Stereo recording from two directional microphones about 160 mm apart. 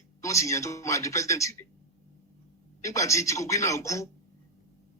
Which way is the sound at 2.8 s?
20° left (ahead or behind).